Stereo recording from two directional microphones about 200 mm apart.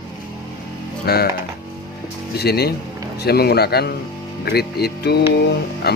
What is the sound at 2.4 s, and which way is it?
Speech, 55° left (ahead or behind).